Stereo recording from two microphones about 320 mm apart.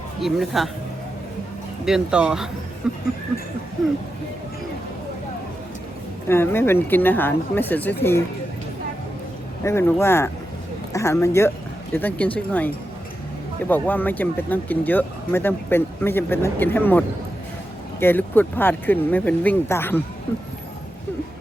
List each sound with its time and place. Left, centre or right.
0.2 s speech: centre
1.8 s speech: centre
6.2 s speech: centre
9.6 s speech: centre
18.0 s speech: centre